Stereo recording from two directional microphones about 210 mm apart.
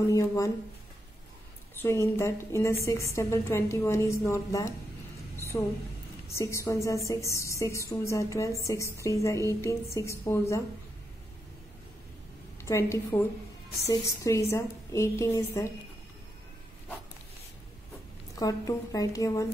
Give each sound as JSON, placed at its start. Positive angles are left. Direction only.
{"t": 0.1, "sound": "a woman's voice", "side_deg": 15}
{"t": 1.8, "sound": "a woman's voice", "side_deg": 10}
{"t": 6.2, "sound": "a woman's voice", "side_deg": 15}
{"t": 12.6, "sound": "a woman's voice", "side_deg": 15}
{"t": 18.3, "sound": "a woman's voice", "side_deg": 15}